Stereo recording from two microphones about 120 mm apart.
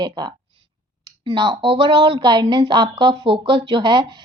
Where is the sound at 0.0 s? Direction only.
40° right (ahead or behind).